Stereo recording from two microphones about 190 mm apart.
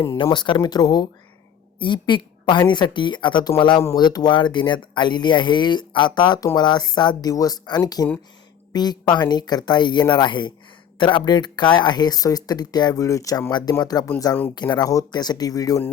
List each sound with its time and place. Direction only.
0.0 s a woman's voice: 15° left (ahead or behind)